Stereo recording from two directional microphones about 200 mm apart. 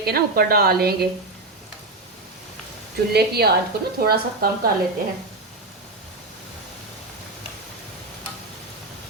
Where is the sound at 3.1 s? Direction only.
50° right (ahead or behind).